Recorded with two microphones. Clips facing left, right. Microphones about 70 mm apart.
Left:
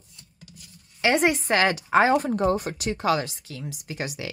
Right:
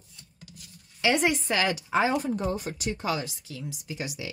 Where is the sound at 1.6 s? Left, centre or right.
Left.